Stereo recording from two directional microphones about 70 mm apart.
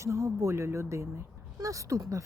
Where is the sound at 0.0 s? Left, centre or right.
Right.